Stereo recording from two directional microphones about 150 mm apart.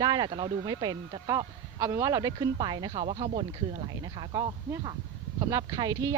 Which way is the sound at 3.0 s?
40° right (ahead or behind).